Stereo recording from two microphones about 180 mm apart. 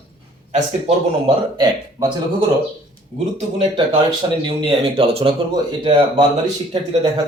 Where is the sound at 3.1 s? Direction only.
35° right (ahead or behind).